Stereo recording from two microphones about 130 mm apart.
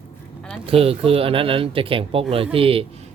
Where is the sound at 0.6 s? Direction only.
50° right (ahead or behind).